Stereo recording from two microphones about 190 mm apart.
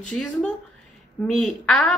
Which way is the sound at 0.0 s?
5° left (ahead or behind).